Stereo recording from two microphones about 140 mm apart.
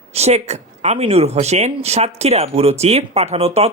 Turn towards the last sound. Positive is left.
turn(degrees=-45)  # may be behind; listen again after turning